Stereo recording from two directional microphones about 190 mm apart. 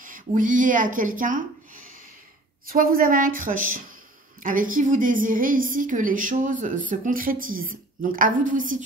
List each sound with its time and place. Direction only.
0.0 s a woman's voice: 45° right (ahead or behind)